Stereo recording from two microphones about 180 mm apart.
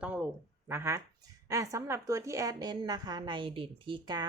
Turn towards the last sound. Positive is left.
turn(degrees=-25)  # may be behind; listen again after turning